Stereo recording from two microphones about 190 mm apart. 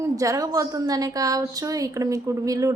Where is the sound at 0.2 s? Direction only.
15° right (ahead or behind).